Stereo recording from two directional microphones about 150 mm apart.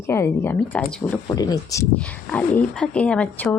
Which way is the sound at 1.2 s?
25° left (ahead or behind).